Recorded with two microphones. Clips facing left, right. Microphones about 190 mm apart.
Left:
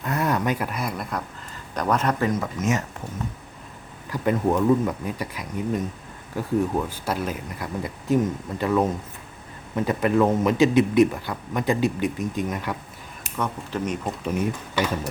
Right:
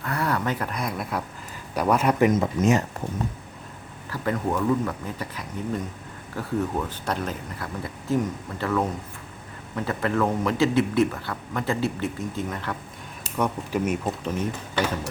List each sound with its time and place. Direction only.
0.0 s speech: 20° left (ahead or behind); by 2.8 s 30° right (ahead or behind)
4.1 s a man's voice: 20° left (ahead or behind)
13.3 s speech: 10° right (ahead or behind)